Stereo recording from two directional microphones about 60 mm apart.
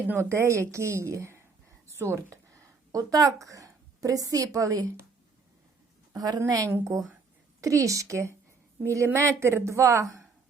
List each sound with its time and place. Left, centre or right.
0.2 s a woman's voice: right
6.1 s a woman's voice: right
7.6 s a woman's voice: right